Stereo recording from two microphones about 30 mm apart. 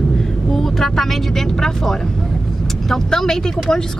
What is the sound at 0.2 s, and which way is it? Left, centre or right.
Vehicle, centre.